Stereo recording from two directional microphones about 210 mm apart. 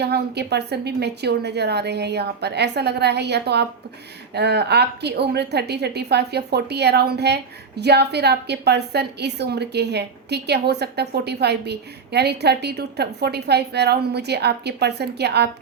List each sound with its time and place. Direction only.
0.0 s a woman's voice: 50° right (ahead or behind)